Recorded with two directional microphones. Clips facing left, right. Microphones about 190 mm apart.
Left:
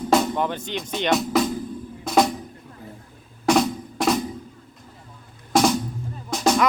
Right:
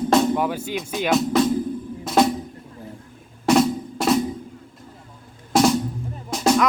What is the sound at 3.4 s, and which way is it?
Drum, centre (ahead or behind).